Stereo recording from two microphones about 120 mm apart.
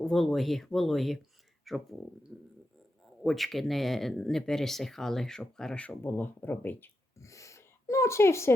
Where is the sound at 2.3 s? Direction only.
15° right (ahead or behind).